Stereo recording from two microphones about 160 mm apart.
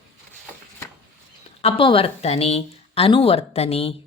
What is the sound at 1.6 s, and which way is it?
Speech, 35° left (ahead or behind).